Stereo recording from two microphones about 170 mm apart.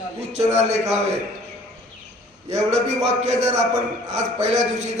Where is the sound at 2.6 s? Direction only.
40° right (ahead or behind).